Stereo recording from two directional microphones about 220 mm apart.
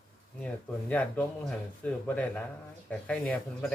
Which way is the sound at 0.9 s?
5° left (ahead or behind).